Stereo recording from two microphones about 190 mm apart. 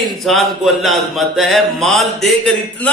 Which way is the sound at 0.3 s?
Centre (ahead or behind).